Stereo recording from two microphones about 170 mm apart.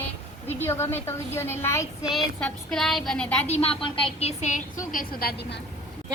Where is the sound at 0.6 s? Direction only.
15° left (ahead or behind).